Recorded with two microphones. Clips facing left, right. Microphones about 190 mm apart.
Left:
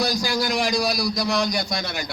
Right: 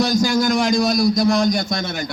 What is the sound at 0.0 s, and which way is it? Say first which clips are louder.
A man's voice: right 6 dB; 45° right (ahead or behind).